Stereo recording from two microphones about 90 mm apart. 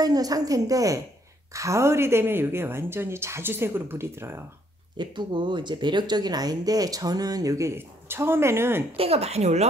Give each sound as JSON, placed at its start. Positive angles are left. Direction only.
{"t": 0.0, "sound": "a woman's voice", "side_deg": -45}
{"t": 4.9, "sound": "speech", "side_deg": -60}